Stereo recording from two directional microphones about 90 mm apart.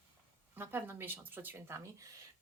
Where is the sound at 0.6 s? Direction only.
25° right (ahead or behind).